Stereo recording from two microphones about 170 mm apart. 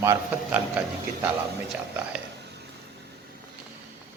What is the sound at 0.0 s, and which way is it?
Speech, 15° right (ahead or behind).